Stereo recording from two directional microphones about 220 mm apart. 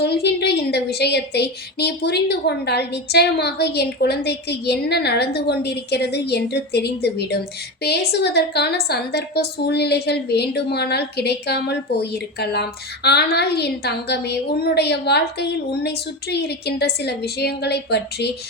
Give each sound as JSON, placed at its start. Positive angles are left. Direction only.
{"t": 0.0, "sound": "a woman's voice", "side_deg": 50}